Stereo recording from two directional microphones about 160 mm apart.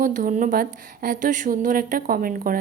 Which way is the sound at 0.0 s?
55° right (ahead or behind).